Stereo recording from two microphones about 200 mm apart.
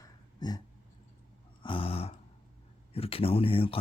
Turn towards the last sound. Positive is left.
turn(degrees=25)  # may be behind; listen again after turning